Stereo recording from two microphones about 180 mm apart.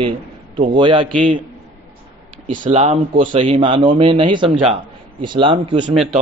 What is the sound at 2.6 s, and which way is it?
A man's voice, 35° right (ahead or behind).